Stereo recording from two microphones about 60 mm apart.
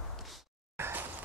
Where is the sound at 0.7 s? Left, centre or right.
Right.